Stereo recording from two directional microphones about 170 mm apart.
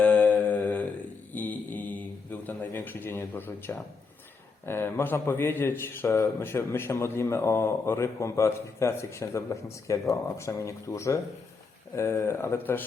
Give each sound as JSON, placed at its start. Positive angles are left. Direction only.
{"t": 0.0, "sound": "mantra", "side_deg": 10}
{"t": 4.6, "sound": "a man's voice", "side_deg": 15}